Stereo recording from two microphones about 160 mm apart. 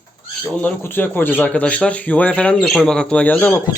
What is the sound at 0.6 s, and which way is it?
Speech, 15° left (ahead or behind).